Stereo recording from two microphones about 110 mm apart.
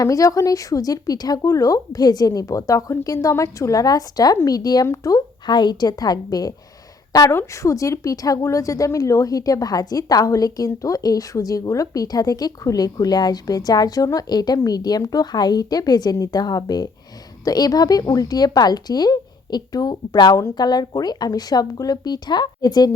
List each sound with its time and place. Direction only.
0.0 s a woman's voice: 30° left (ahead or behind)